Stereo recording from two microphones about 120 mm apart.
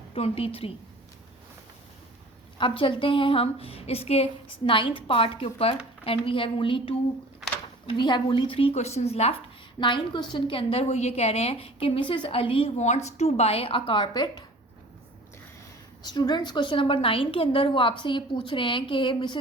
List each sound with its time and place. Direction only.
0.1 s a woman's voice: 50° left (ahead or behind)
2.6 s a woman's voice: 45° left (ahead or behind); by 9.3 s 60° left (ahead or behind)
9.8 s a woman's voice: 40° left (ahead or behind)
12.7 s a woman's voice: 70° left (ahead or behind); by 14.4 s 35° left (ahead or behind)
16.0 s a woman's voice: 35° left (ahead or behind)